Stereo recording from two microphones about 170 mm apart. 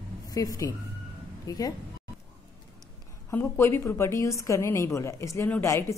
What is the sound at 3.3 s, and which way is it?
A woman's voice, 15° left (ahead or behind).